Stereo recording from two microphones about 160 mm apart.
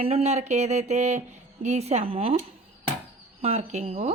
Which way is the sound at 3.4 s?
40° right (ahead or behind).